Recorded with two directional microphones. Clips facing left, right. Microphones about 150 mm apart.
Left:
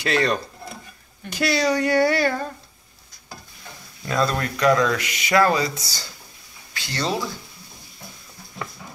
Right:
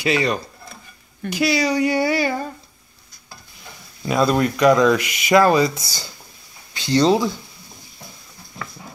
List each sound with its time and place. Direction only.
0.0 s mechanisms: 5° right (ahead or behind)
1.3 s speech: 5° right (ahead or behind)
4.0 s mechanisms: 15° right (ahead or behind)
6.7 s speech: 20° right (ahead or behind)